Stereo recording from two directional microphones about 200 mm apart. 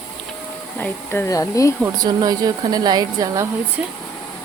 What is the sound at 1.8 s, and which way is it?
A woman's voice, 20° right (ahead or behind).